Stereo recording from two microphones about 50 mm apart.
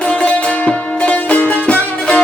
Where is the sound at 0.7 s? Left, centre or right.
Left.